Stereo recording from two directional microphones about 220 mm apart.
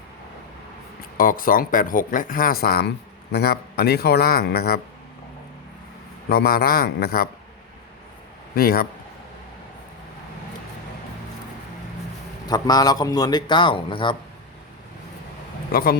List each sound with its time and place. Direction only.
1.1 s speech: 40° left (ahead or behind)
6.2 s speech: 45° left (ahead or behind)
8.5 s speech: 45° left (ahead or behind)
12.5 s a man's voice: 15° left (ahead or behind)
15.7 s speech: 40° left (ahead or behind)